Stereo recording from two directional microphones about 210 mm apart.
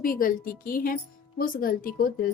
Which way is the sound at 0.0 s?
40° left (ahead or behind).